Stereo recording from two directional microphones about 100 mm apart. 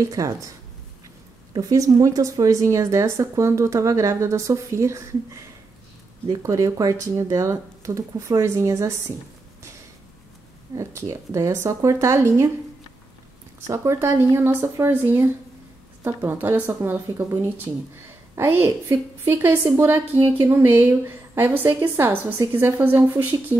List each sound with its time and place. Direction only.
0.0 s a woman's voice: 35° right (ahead or behind)
1.5 s a woman's voice: 35° right (ahead or behind)
10.8 s a woman's voice: 30° right (ahead or behind)
13.7 s a woman's voice: 25° right (ahead or behind)